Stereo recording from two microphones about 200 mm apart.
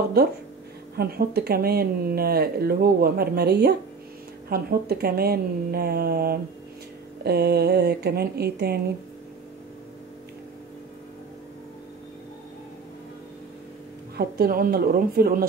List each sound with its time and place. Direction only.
0.2 s speech: 50° right (ahead or behind)
14.1 s speech: 50° right (ahead or behind)